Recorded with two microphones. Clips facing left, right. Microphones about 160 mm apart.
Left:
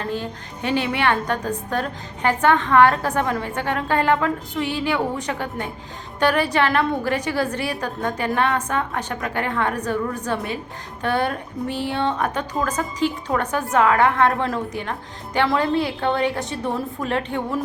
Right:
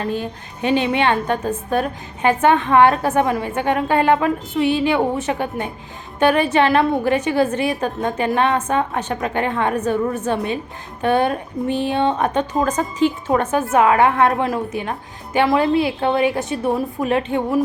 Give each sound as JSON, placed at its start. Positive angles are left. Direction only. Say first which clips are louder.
{"t": 0.0, "sound": "a woman's voice", "louder": "right 3 dB", "side_deg": -15}